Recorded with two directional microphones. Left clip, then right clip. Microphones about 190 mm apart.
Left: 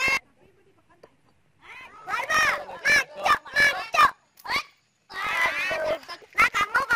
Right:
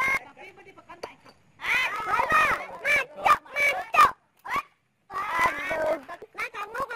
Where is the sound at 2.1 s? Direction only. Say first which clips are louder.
Even; 40° right (ahead or behind).